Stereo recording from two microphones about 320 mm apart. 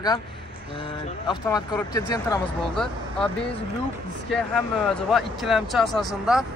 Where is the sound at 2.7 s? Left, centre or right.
Centre.